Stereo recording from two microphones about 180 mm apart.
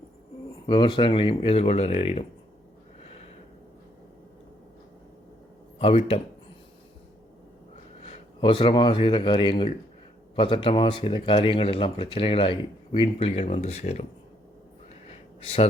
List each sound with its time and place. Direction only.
0.7 s speech: 25° left (ahead or behind)
5.8 s speech: 35° left (ahead or behind)
8.0 s speech: 35° left (ahead or behind)
15.0 s a sound: 35° left (ahead or behind)